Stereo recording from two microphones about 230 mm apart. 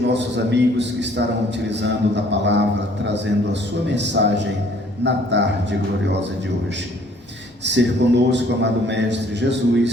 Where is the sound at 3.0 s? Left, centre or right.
Right.